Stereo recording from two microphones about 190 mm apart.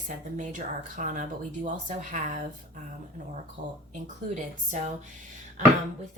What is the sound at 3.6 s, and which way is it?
Speech, 45° right (ahead or behind).